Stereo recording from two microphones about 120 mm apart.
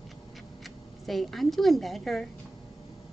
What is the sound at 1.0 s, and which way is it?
A woman's voice, centre (ahead or behind).